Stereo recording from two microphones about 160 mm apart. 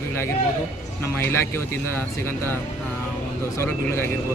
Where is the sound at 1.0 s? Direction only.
15° left (ahead or behind).